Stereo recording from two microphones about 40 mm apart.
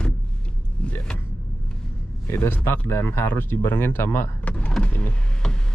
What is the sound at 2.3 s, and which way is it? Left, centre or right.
Speech, left.